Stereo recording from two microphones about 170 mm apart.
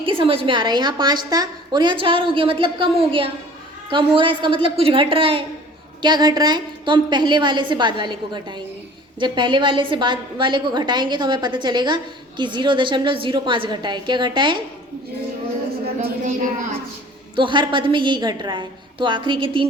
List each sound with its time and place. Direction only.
0.0 s a woman's voice: 30° right (ahead or behind)
16.0 s a woman's voice: 50° right (ahead or behind)
17.3 s a woman's voice: 30° right (ahead or behind)